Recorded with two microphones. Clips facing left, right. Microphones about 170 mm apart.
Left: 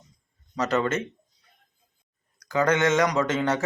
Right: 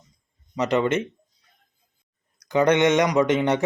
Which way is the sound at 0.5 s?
15° right (ahead or behind).